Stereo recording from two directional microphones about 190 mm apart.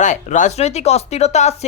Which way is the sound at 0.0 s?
40° left (ahead or behind).